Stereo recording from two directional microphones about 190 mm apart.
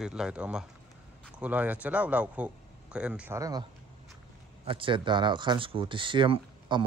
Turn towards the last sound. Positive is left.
turn(degrees=-25)  # may be behind; listen again after turning